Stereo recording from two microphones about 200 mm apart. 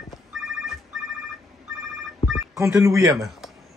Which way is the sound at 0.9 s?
Centre (ahead or behind).